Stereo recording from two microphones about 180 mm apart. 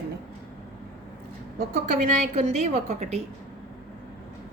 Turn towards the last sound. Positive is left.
turn(degrees=-35)  # may be behind; listen again after turning